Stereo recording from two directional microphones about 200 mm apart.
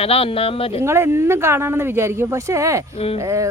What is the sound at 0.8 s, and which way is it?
Speech, 10° right (ahead or behind).